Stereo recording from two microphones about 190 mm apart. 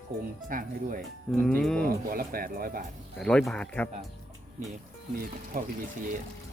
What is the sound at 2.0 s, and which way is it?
Speech, 50° right (ahead or behind).